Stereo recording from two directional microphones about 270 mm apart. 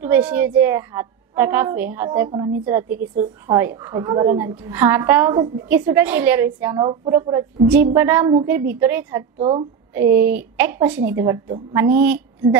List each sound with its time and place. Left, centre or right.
0.0 s a woman's voice: centre
9.4 s a woman's voice: centre
10.0 s speech: right
10.3 s a woman's voice: centre